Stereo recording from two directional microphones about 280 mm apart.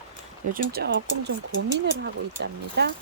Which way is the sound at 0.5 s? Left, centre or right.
Right.